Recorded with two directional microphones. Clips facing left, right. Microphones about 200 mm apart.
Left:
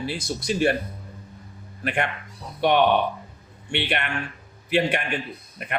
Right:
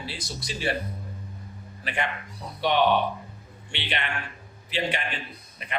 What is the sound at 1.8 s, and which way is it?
A man's voice, 55° left (ahead or behind).